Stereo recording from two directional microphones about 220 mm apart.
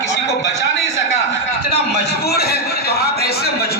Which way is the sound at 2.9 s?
45° left (ahead or behind).